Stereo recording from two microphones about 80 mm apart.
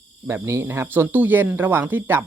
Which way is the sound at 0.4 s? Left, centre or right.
Right.